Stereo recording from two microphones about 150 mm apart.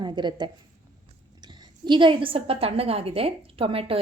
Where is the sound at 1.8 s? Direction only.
30° right (ahead or behind).